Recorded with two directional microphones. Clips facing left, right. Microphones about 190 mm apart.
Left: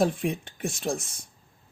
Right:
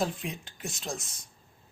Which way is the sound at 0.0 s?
55° left (ahead or behind).